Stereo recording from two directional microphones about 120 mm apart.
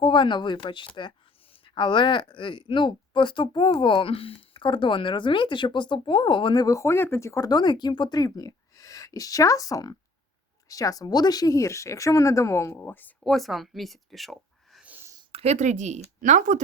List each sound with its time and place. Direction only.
0.0 s speech: 40° left (ahead or behind); by 13.1 s 15° left (ahead or behind)
13.2 s a woman's voice: centre (ahead or behind)
14.8 s a sound: 15° right (ahead or behind)
15.3 s speech: 60° right (ahead or behind); by 16.6 s 90° right